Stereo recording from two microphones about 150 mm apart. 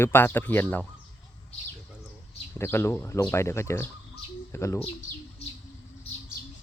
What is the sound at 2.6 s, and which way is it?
Speech, 15° left (ahead or behind).